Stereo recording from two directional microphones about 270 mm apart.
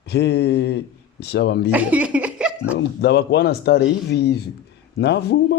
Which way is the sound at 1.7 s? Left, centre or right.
Centre.